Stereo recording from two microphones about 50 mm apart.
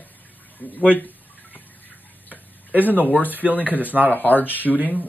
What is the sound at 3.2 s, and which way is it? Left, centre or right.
Speech, right.